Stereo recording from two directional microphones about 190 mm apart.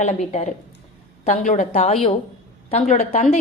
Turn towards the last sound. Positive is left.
turn(degrees=35)  # may be behind; listen again after turning